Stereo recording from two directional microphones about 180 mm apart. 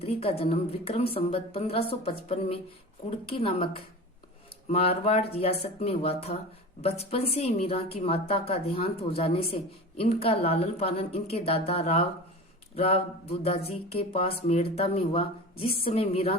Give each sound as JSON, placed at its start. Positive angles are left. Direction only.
{"t": 0.0, "sound": "a woman's voice", "side_deg": 35}
{"t": 3.2, "sound": "a woman's voice", "side_deg": 30}
{"t": 12.7, "sound": "a sound", "side_deg": 35}
{"t": 13.7, "sound": "a woman's voice", "side_deg": 35}
{"t": 15.5, "sound": "a woman's voice", "side_deg": 60}
{"t": 15.9, "sound": "a woman's voice", "side_deg": 35}